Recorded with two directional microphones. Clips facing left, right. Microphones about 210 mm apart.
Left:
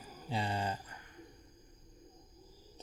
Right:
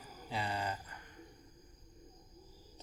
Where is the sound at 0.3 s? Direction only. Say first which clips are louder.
Left 2 dB; 30° left (ahead or behind).